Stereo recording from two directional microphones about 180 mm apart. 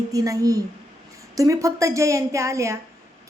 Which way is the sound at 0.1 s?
20° right (ahead or behind).